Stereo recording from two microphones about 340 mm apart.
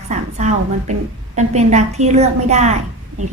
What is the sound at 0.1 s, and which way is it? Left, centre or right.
A woman's voice, right.